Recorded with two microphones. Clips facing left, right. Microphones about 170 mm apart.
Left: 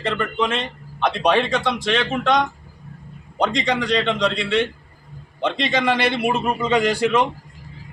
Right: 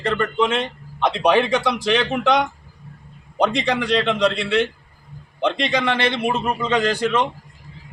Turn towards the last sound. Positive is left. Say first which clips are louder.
# left 1 dB
turn(degrees=10)  # may be behind; listen again after turning